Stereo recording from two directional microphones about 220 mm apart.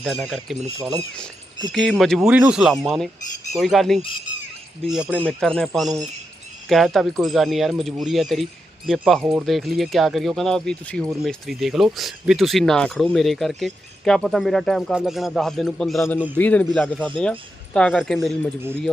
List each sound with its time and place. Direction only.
0.0 s speech: centre (ahead or behind)